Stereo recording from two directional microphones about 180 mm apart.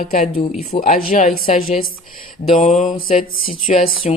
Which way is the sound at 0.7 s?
45° left (ahead or behind).